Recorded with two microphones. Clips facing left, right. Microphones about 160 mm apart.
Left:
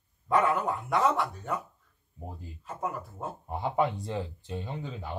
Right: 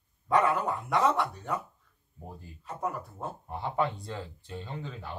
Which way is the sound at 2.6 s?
Centre (ahead or behind).